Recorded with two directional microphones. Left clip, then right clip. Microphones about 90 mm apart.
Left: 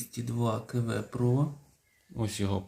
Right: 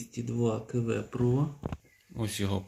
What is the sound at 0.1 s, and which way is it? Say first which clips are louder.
Speech: right 2 dB; 35° left (ahead or behind).